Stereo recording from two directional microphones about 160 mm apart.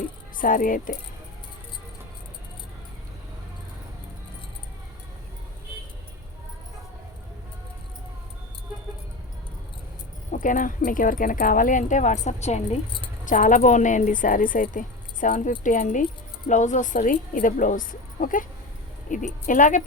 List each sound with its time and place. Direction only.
0.3 s speech: 55° left (ahead or behind)
10.3 s a woman's voice: 55° left (ahead or behind)